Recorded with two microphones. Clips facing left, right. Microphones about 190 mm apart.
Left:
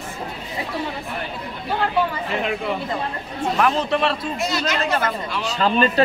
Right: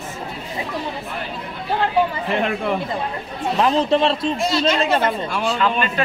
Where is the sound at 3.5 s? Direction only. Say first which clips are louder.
Right 4 dB; 25° right (ahead or behind).